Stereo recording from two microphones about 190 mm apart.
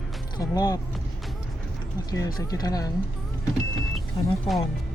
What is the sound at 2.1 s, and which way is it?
Speech, 20° left (ahead or behind).